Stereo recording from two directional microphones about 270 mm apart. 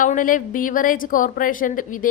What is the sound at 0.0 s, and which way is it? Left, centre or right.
A woman's voice, left.